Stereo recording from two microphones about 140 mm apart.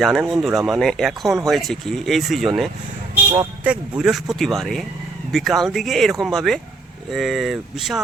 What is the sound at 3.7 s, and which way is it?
Speech, 5° right (ahead or behind).